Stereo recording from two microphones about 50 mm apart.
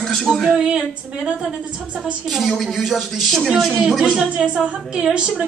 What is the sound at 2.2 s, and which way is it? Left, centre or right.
A woman's voice, centre.